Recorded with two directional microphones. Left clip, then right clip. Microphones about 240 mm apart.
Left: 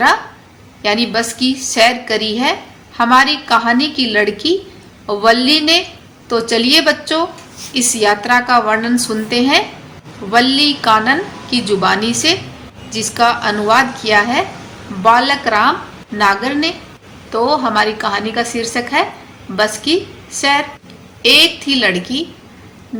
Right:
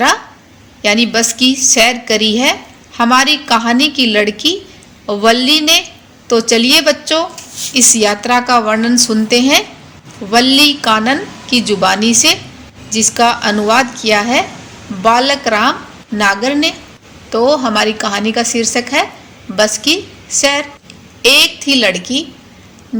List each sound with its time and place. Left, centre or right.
0.8 s a woman's voice: right